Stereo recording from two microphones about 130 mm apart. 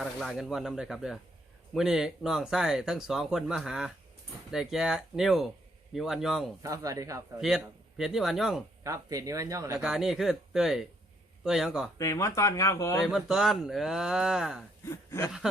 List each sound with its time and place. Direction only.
0.0 s speech: centre (ahead or behind)
6.6 s speech: 25° right (ahead or behind)
7.3 s speech: 5° right (ahead or behind)
8.8 s speech: 25° right (ahead or behind)
9.8 s speech: 5° right (ahead or behind)
11.9 s speech: 25° left (ahead or behind)
13.1 s speech: 5° right (ahead or behind)
14.8 s a sound: 20° left (ahead or behind)